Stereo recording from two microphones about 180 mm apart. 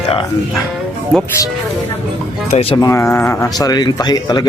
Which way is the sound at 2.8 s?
15° left (ahead or behind).